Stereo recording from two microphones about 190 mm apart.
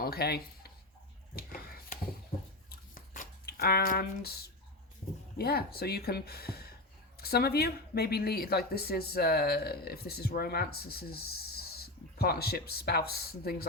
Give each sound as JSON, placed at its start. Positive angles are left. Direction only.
{"t": 0.0, "sound": "speech", "side_deg": 55}
{"t": 1.4, "sound": "a sound", "side_deg": 50}
{"t": 5.4, "sound": "a woman's voice", "side_deg": 55}